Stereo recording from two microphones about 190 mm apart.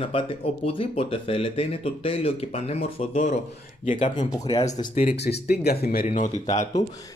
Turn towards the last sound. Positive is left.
turn(degrees=40)  # may be behind; listen again after turning